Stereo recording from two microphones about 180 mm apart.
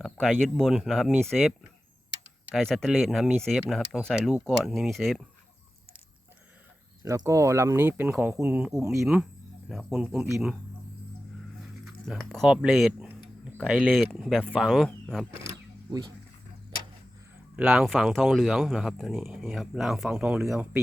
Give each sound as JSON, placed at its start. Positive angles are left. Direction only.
{"t": 0.0, "sound": "speech", "side_deg": 0}
{"t": 2.6, "sound": "speech", "side_deg": 0}
{"t": 7.0, "sound": "speech", "side_deg": -20}
{"t": 8.7, "sound": "speech", "side_deg": -15}
{"t": 9.0, "sound": "speech", "side_deg": -5}
{"t": 11.9, "sound": "speech", "side_deg": 0}
{"t": 15.9, "sound": "speech", "side_deg": -25}
{"t": 17.6, "sound": "speech", "side_deg": -5}